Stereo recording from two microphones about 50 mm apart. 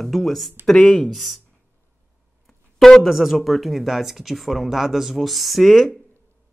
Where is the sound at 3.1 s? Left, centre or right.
Centre.